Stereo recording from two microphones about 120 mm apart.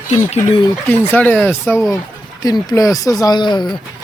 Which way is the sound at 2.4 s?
35° left (ahead or behind).